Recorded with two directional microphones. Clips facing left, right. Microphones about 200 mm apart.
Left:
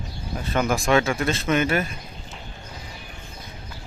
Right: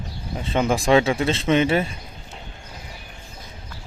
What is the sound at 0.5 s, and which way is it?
Speech, 30° right (ahead or behind).